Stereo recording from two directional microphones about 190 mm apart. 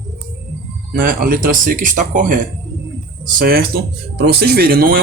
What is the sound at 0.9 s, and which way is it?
Speech, 50° right (ahead or behind).